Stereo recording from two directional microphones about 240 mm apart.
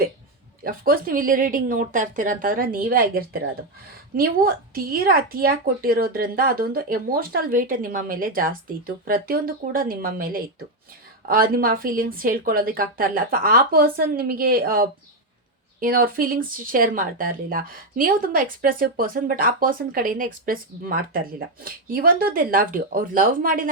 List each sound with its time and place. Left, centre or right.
0.6 s speech: right